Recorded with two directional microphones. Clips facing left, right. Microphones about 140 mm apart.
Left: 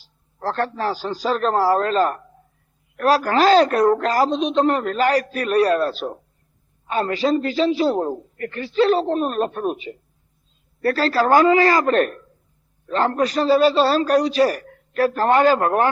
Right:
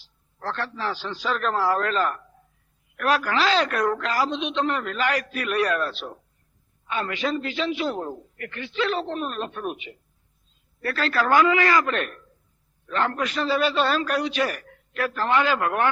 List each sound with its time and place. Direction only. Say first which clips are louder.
0.3 s a woman's voice: left 7 dB; 40° left (ahead or behind)